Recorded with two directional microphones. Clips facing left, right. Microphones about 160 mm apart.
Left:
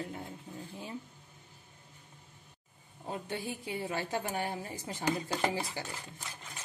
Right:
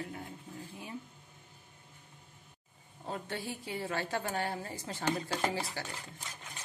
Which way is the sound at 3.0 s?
15° left (ahead or behind).